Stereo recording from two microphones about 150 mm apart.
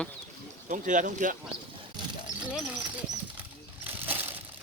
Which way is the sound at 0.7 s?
60° right (ahead or behind).